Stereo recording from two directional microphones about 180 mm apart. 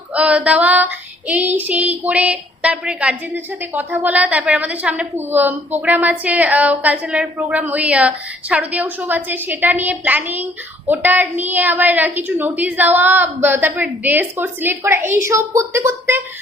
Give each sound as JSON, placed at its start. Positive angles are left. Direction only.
{"t": 0.1, "sound": "female singing", "side_deg": -5}